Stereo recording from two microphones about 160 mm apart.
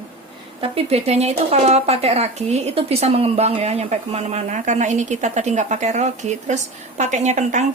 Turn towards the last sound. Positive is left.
turn(degrees=-45)  # may be behind; listen again after turning